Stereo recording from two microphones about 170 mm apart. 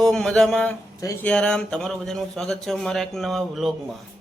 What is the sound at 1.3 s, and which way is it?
Speech, 5° left (ahead or behind).